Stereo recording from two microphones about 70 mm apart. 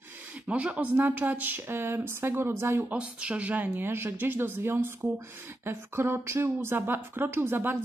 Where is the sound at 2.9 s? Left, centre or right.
Centre; by 7.8 s right.